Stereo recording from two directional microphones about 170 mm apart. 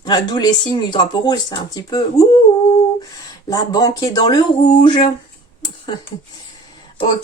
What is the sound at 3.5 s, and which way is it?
Speech, 25° left (ahead or behind).